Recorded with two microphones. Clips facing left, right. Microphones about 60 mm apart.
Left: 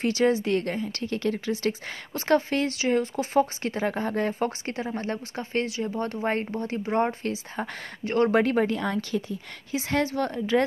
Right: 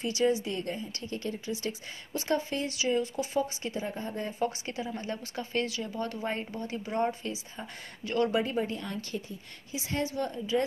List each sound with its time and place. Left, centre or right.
0.0 s speech: left
0.5 s speech: left
4.3 s speech: left
7.2 s speech: left
8.0 s speech: left
8.4 s speech: left
9.8 s speech: left